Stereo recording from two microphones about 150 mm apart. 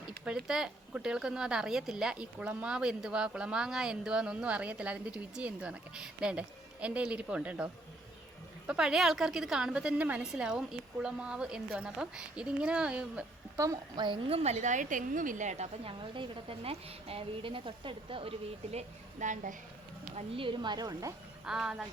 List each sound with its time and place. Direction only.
0.3 s a woman's voice: 5° right (ahead or behind)
13.6 s a woman's voice: 25° right (ahead or behind); by 19.5 s 60° right (ahead or behind)
20.1 s a woman's voice: 35° right (ahead or behind)
21.4 s a woman's voice: 5° right (ahead or behind)